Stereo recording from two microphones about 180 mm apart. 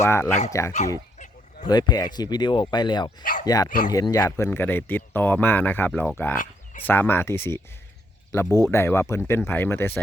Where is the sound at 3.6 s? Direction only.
45° left (ahead or behind).